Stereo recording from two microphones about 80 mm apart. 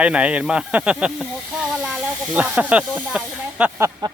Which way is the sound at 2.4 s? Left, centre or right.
Centre.